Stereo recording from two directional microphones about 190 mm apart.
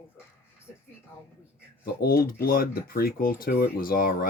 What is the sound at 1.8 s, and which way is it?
Speech, 55° left (ahead or behind).